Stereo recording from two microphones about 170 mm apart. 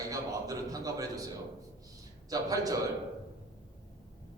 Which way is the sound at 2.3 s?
20° right (ahead or behind).